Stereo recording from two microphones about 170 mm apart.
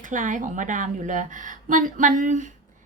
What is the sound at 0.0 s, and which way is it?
Speech, 50° right (ahead or behind).